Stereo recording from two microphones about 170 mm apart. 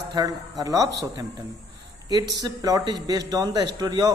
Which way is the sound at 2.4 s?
20° right (ahead or behind).